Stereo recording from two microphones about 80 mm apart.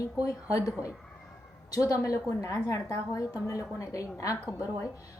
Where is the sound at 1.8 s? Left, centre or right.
Left.